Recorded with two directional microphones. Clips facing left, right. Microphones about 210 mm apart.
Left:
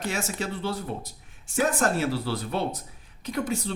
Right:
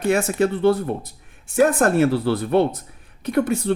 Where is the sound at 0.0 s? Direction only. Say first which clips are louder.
Right 11 dB; 60° right (ahead or behind).